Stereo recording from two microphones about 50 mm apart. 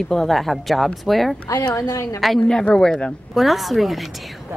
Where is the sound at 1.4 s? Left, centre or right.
Left.